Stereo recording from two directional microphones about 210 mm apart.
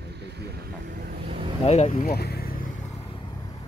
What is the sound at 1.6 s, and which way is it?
Speech, 30° left (ahead or behind).